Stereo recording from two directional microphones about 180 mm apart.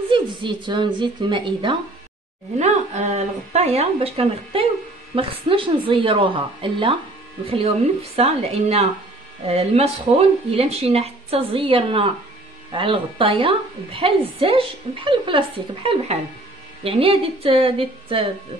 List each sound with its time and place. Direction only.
0.1 s a woman's voice: 25° right (ahead or behind)
2.6 s a woman's voice: 40° right (ahead or behind)